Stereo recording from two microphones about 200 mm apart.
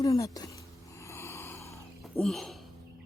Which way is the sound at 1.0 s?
15° left (ahead or behind).